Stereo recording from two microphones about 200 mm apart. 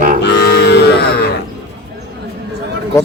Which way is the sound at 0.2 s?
60° left (ahead or behind).